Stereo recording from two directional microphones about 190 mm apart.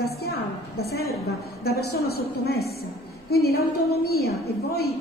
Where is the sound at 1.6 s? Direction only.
55° left (ahead or behind).